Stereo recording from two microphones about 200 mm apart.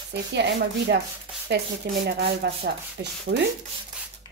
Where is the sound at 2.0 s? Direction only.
55° right (ahead or behind).